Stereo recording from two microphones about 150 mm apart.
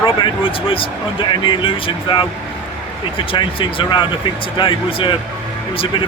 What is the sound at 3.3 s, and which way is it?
Speech, 30° left (ahead or behind).